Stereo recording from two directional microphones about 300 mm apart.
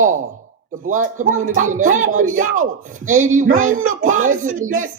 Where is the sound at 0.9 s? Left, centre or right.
Right.